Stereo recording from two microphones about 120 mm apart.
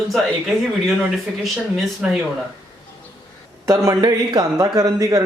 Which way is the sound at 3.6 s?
25° right (ahead or behind).